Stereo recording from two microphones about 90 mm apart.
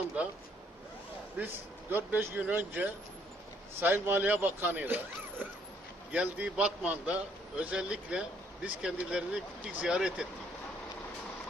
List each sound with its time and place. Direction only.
0.2 s speech: 15° right (ahead or behind)
1.4 s a man's voice: 20° right (ahead or behind)
6.1 s speech: 15° right (ahead or behind)